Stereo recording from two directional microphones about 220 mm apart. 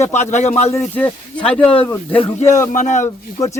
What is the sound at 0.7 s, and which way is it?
Speech, 10° left (ahead or behind).